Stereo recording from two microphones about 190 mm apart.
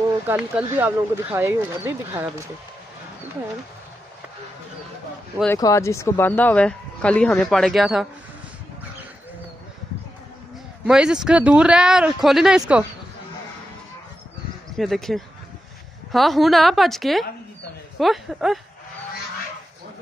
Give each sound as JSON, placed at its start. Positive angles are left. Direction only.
{"t": 0.3, "sound": "speech", "side_deg": -10}
{"t": 5.6, "sound": "speech", "side_deg": 15}
{"t": 10.9, "sound": "speech", "side_deg": -5}
{"t": 14.8, "sound": "speech", "side_deg": 0}